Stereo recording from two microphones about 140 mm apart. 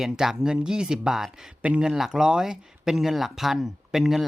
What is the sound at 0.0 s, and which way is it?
Speech, 5° right (ahead or behind).